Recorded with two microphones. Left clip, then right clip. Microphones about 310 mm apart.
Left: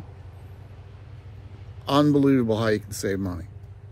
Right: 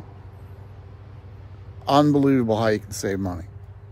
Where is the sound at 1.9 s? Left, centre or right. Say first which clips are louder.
Right 2 dB; centre.